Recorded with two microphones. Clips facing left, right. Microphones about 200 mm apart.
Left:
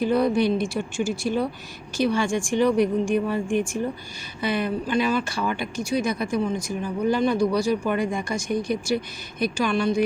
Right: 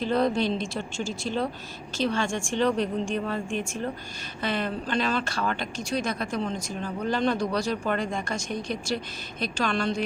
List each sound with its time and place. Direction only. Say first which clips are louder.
0.0 s speech: left 4 dB; 10° left (ahead or behind)